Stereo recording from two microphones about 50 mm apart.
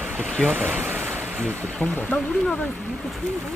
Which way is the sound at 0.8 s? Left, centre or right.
Right.